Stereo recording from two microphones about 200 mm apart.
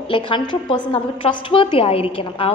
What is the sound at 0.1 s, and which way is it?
A woman's voice, 25° left (ahead or behind).